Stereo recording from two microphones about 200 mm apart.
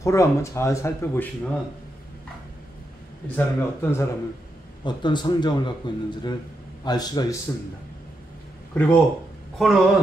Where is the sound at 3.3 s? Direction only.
10° left (ahead or behind).